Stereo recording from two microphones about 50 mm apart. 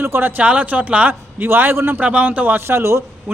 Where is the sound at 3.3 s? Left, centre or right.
Right.